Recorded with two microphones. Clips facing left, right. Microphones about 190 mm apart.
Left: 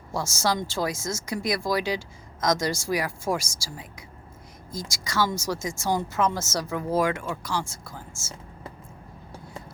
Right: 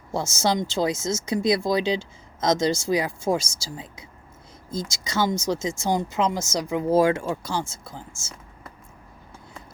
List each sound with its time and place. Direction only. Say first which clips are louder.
0.1 s speech: right 3 dB; 20° right (ahead or behind)